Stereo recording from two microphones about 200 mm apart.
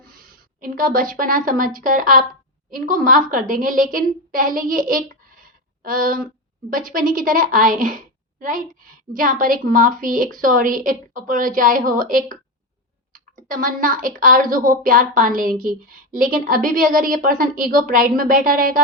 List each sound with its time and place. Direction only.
0.0 s a woman's voice: 45° right (ahead or behind)